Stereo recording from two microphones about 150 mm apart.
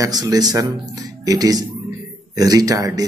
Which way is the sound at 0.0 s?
25° right (ahead or behind).